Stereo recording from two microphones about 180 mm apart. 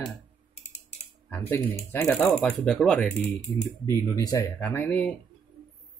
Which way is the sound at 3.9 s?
15° left (ahead or behind).